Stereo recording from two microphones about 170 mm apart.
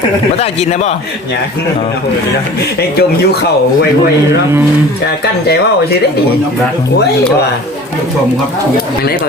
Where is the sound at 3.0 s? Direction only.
70° left (ahead or behind).